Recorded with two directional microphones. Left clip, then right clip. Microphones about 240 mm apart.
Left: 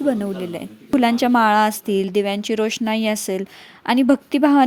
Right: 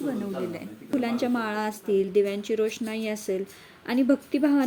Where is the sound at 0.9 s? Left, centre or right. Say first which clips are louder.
Left 11 dB; left.